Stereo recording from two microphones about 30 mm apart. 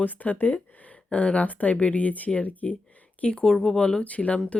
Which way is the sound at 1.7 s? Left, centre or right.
Left.